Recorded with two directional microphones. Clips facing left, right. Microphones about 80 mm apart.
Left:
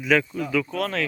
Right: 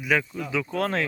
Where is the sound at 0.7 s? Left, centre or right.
Right.